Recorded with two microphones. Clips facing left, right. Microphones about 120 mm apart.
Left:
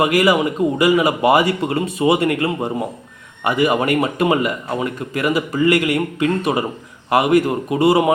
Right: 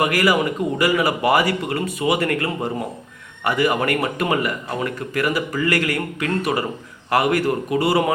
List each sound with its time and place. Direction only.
0.0 s a man's voice: 20° left (ahead or behind)